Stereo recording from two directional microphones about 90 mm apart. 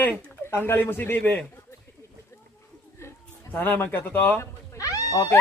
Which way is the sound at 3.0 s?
25° left (ahead or behind).